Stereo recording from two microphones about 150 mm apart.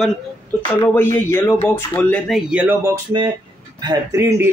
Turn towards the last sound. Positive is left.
turn(degrees=-15)  # may be behind; listen again after turning